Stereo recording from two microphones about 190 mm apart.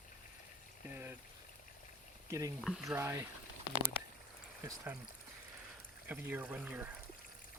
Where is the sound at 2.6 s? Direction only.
Centre (ahead or behind).